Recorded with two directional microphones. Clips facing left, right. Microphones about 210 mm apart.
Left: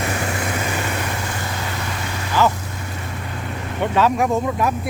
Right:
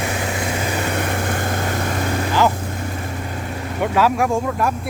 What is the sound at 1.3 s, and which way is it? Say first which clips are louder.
Vehicle: right 5 dB; 50° right (ahead or behind).